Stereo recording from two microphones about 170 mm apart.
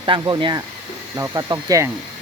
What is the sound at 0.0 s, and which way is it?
Speech, 30° right (ahead or behind).